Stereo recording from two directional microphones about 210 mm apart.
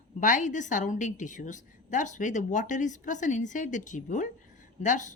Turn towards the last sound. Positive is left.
turn(degrees=35)  # may be behind; listen again after turning